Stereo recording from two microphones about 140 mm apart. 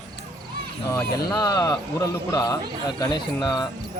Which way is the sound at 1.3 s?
30° left (ahead or behind).